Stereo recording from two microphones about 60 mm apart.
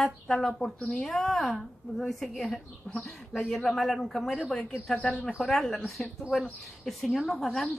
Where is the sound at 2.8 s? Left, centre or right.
Centre.